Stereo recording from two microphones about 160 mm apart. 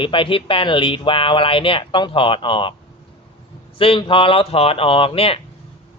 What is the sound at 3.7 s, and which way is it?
Speech, 35° left (ahead or behind).